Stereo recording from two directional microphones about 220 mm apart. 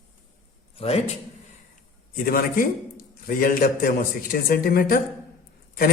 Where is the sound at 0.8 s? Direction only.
30° left (ahead or behind).